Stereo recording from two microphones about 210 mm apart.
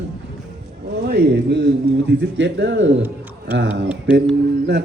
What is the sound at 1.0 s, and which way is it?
Speech, 55° right (ahead or behind).